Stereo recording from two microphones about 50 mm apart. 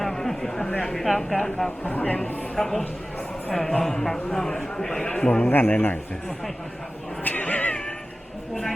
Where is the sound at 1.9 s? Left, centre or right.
Left.